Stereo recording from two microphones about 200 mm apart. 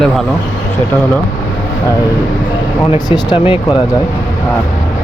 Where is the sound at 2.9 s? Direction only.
25° left (ahead or behind).